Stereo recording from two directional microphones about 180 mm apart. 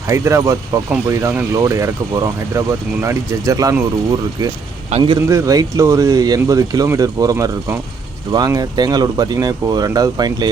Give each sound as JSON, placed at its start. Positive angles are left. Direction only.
{"t": 0.1, "sound": "speech", "side_deg": -15}
{"t": 4.9, "sound": "a man's voice", "side_deg": -35}
{"t": 5.3, "sound": "speech", "side_deg": -20}